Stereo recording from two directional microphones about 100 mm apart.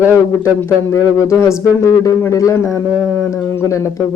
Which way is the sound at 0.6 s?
25° left (ahead or behind).